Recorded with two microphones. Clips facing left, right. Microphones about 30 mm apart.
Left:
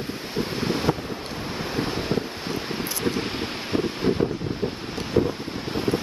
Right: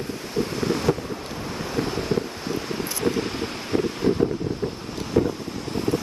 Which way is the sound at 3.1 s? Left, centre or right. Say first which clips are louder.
Right 2 dB; left.